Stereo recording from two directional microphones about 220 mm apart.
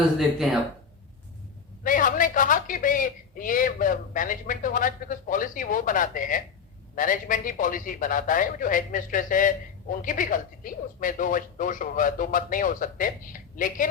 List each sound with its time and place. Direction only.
0.2 s speech: centre (ahead or behind)
1.8 s a woman's voice: 35° left (ahead or behind)